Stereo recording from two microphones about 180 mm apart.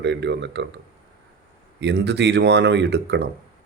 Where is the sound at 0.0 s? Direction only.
75° right (ahead or behind).